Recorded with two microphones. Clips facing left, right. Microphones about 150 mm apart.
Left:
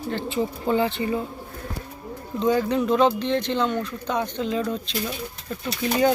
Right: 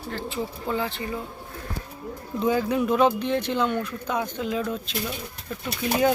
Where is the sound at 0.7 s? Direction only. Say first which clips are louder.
Left 6 dB; 25° left (ahead or behind).